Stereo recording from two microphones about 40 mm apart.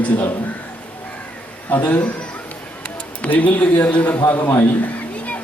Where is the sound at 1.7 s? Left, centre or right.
Left.